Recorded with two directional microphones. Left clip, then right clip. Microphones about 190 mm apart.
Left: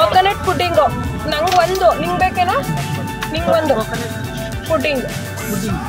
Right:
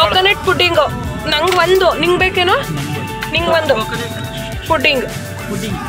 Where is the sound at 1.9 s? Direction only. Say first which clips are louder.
Right 3 dB; centre (ahead or behind).